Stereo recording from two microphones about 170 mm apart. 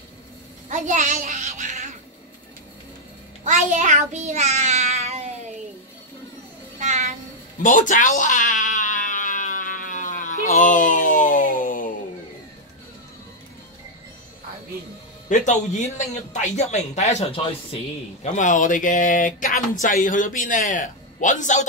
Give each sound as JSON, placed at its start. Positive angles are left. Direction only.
{"t": 0.7, "sound": "a sound", "side_deg": -45}
{"t": 3.4, "sound": "child singing", "side_deg": -45}
{"t": 6.8, "sound": "child singing", "side_deg": -40}
{"t": 7.6, "sound": "a sound", "side_deg": 50}
{"t": 15.2, "sound": "a man's voice", "side_deg": 45}
{"t": 18.2, "sound": "speech", "side_deg": 45}